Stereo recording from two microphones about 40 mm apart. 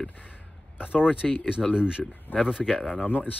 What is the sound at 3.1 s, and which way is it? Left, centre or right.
Speech, left.